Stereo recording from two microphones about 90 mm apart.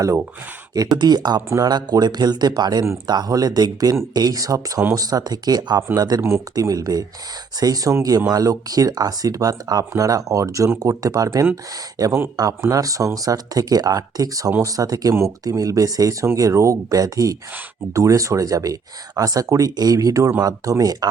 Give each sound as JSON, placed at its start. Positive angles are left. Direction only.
{"t": 0.0, "sound": "speech", "side_deg": -35}
{"t": 0.7, "sound": "speech", "side_deg": -50}